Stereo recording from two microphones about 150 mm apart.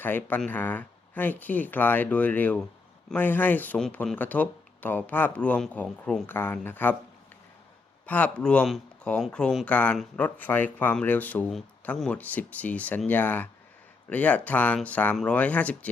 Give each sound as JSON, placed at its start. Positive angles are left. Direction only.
{"t": 0.0, "sound": "speech", "side_deg": 15}
{"t": 8.0, "sound": "speech", "side_deg": 10}